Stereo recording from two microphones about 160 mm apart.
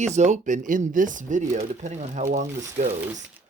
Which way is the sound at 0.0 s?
45° right (ahead or behind).